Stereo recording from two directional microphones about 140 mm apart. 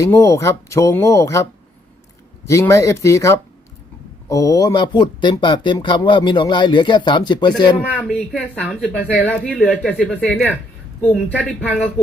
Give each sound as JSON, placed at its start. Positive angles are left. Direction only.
{"t": 0.0, "sound": "speech", "side_deg": 20}
{"t": 2.5, "sound": "speech", "side_deg": 20}
{"t": 7.9, "sound": "speech", "side_deg": 5}